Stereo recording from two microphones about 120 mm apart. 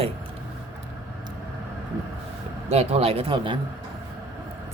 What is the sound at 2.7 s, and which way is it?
Speech, 60° right (ahead or behind).